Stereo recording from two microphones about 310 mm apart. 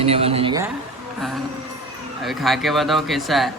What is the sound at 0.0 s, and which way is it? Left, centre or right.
Speech, centre.